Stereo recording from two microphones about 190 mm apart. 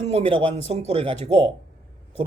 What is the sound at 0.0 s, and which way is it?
A man's voice, 35° right (ahead or behind).